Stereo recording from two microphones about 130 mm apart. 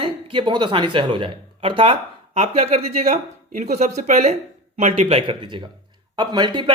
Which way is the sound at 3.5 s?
65° right (ahead or behind).